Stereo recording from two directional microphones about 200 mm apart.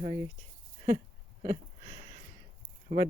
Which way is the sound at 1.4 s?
25° right (ahead or behind).